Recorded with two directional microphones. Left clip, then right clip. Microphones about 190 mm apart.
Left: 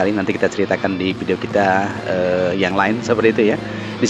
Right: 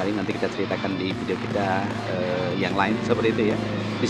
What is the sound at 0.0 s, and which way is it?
Speech, 35° left (ahead or behind).